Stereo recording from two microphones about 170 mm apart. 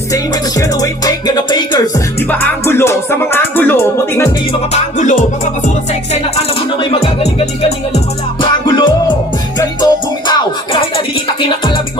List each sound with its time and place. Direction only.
0.1 s music: 20° left (ahead or behind)
2.3 s music: 15° left (ahead or behind)
4.5 s music: 45° left (ahead or behind)
6.5 s music: 35° left (ahead or behind)